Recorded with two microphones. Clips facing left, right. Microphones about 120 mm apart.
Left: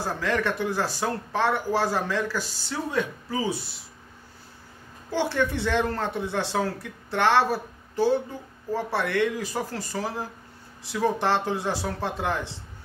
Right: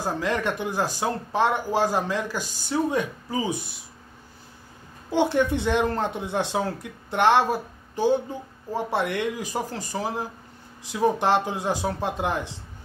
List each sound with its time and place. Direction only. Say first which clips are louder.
0.0 s speech: right 1 dB; 15° right (ahead or behind)
5.1 s speech: right 4 dB; 15° right (ahead or behind)